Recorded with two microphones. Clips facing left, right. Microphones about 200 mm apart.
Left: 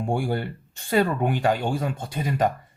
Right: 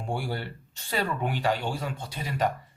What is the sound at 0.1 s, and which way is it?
Speech, 50° left (ahead or behind).